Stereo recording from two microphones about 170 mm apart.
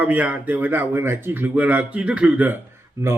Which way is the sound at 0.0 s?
10° right (ahead or behind).